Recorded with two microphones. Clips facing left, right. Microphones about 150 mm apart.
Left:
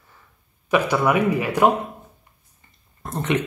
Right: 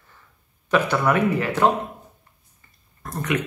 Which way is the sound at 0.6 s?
10° left (ahead or behind).